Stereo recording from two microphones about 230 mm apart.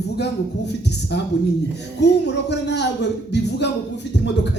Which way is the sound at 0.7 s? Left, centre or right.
Left.